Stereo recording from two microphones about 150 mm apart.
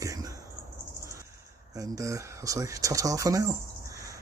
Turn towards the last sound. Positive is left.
turn(degrees=-20)  # may be behind; listen again after turning